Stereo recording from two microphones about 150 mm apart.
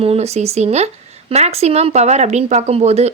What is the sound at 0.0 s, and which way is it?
Speech, 45° right (ahead or behind).